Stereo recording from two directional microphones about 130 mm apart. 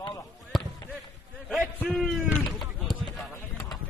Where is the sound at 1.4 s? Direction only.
Centre (ahead or behind).